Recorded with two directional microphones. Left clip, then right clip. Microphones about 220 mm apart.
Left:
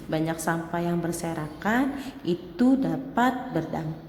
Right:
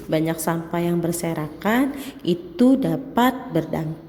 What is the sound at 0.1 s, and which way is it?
A woman's voice, 15° right (ahead or behind).